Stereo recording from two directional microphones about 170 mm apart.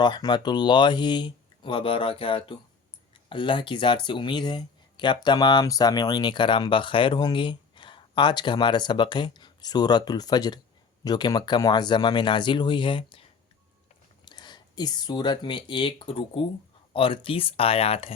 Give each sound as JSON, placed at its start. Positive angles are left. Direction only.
{"t": 0.0, "sound": "speech", "side_deg": 25}
{"t": 14.3, "sound": "speech", "side_deg": 25}